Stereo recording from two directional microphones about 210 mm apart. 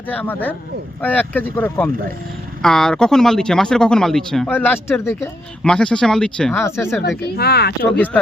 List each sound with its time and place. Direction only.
0.1 s speech: 10° left (ahead or behind)
7.0 s speech: 50° left (ahead or behind)
7.9 s speech: 5° left (ahead or behind)